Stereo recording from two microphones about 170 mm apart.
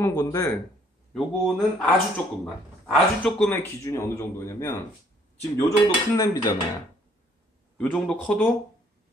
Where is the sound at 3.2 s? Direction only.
5° left (ahead or behind).